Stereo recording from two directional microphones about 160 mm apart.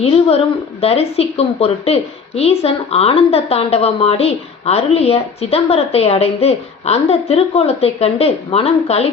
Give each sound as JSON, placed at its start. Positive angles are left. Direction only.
{"t": 0.0, "sound": "a woman's voice", "side_deg": 40}